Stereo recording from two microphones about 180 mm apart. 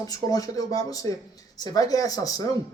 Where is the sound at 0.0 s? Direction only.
20° left (ahead or behind).